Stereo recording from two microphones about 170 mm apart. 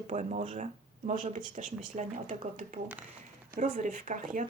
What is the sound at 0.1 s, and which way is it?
Speech, 45° right (ahead or behind).